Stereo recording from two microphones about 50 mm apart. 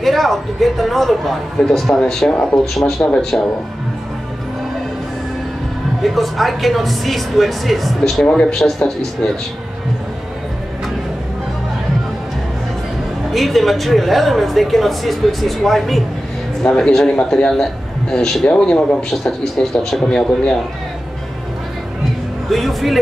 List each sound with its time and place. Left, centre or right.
0.0 s a man's voice: centre
6.0 s speech: centre
8.3 s a man's voice: centre
8.5 s a man's voice: centre
13.3 s speech: centre
16.6 s a man's voice: centre
20.1 s a man's voice: centre
22.5 s speech: centre